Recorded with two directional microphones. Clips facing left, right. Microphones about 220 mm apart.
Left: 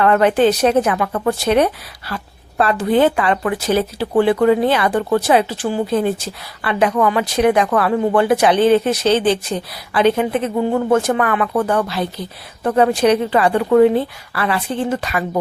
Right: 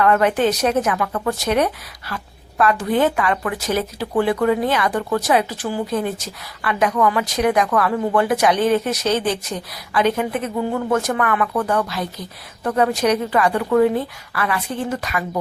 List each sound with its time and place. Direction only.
0.0 s a woman's voice: 30° left (ahead or behind)